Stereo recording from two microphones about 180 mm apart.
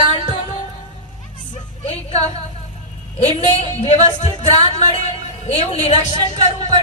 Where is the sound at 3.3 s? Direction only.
40° left (ahead or behind).